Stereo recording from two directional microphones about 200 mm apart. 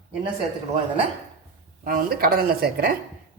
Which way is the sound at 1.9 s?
45° right (ahead or behind).